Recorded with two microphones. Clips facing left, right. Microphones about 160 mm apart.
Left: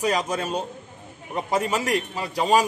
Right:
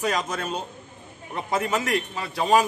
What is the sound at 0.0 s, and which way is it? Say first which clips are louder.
A man's voice: left 2 dB; 10° left (ahead or behind).